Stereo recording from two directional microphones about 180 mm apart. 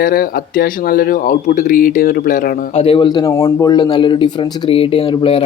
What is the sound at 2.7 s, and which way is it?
Speech, 30° left (ahead or behind).